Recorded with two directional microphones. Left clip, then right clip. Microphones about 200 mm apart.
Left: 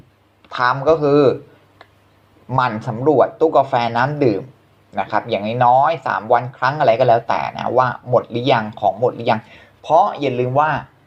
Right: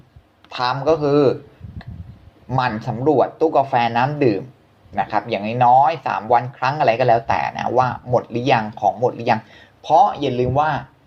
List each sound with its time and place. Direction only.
0.8 s speech: 5° left (ahead or behind)
2.5 s speech: centre (ahead or behind)